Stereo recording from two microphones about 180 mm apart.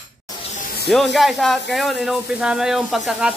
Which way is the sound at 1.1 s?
Centre (ahead or behind).